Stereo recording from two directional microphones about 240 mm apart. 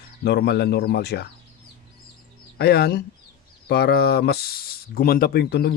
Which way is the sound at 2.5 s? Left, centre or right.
Left.